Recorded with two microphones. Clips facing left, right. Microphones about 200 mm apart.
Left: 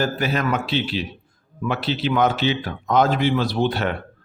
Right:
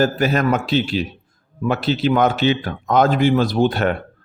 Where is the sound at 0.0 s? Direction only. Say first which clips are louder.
Right 5 dB; 45° right (ahead or behind).